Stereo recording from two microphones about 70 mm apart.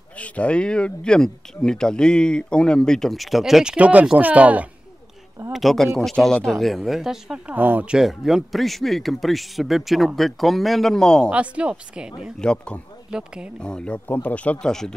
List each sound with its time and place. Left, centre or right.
0.2 s speech: centre
3.7 s speech: centre
5.5 s speech: centre
6.6 s speech: centre
7.3 s speech: centre
11.2 s speech: centre
12.4 s speech: centre
13.1 s speech: centre
13.6 s speech: centre
14.7 s speech: centre